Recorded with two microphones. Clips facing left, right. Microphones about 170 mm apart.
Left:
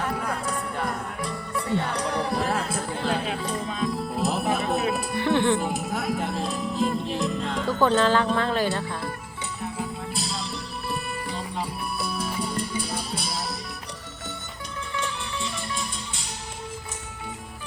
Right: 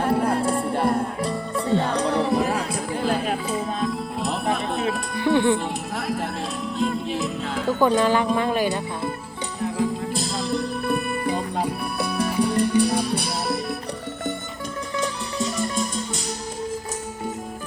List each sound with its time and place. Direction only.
0.0 s music: 30° right (ahead or behind)
2.6 s music: 5° left (ahead or behind)
2.9 s music: 10° right (ahead or behind)
5.2 s music: 15° right (ahead or behind)
5.5 s music: 5° left (ahead or behind); by 9.1 s 20° right (ahead or behind)
10.8 s music: 55° right (ahead or behind)
14.9 s music: 40° right (ahead or behind)